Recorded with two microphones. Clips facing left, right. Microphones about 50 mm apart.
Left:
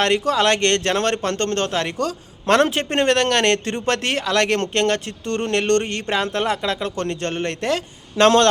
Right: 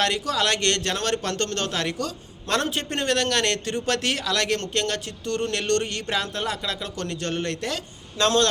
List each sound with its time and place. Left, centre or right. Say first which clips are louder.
0.0 s a man's voice: left 6 dB; left
2.0 s a man's voice: left 6 dB; left
6.2 s a man's voice: left 7 dB; left